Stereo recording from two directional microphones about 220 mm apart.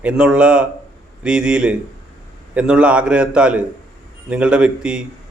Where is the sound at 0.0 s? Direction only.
5° right (ahead or behind).